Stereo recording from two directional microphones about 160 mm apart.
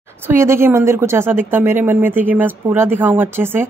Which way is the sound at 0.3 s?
15° right (ahead or behind).